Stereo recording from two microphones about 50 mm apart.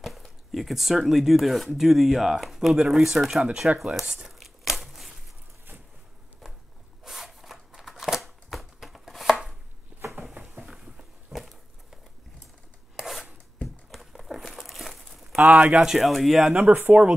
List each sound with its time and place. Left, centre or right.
0.5 s speech: centre
2.7 s speech: centre
3.8 s crumpling: centre
6.4 s a sound: centre
8.7 s chopping: centre
10.6 s a sound: centre
13.8 s a sound: centre
15.4 s speech: right
15.9 s speech: centre
16.5 s speech: right